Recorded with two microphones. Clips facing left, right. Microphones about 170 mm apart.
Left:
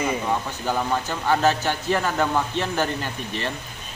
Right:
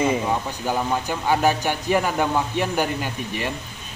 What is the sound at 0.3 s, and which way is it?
Speech, 15° right (ahead or behind).